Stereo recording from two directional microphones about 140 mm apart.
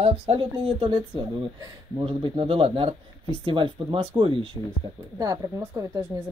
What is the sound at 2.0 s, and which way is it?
Speech, 40° right (ahead or behind).